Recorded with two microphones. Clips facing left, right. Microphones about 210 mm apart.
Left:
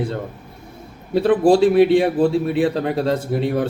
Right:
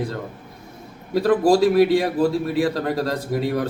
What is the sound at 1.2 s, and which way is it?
A man's voice, 40° right (ahead or behind).